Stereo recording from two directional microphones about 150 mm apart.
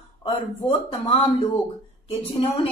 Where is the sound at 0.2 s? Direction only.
35° left (ahead or behind).